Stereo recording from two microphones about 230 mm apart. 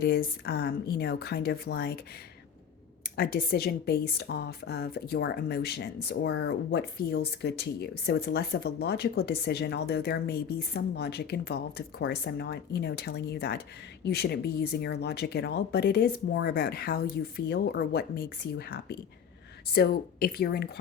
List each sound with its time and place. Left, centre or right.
0.0 s a woman's voice: left
3.2 s a woman's voice: left